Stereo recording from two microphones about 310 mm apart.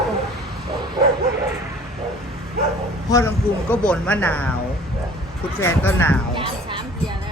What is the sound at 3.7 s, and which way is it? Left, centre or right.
Speech, centre.